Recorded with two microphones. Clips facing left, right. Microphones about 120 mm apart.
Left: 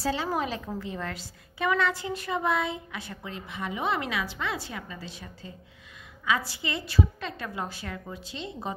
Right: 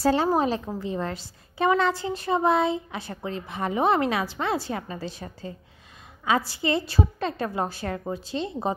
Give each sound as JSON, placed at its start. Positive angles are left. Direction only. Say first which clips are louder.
{"t": 0.0, "sound": "a woman's voice", "louder": "right 7 dB", "side_deg": -50}
{"t": 0.3, "sound": "a woman's voice", "louder": "right 6 dB", "side_deg": -35}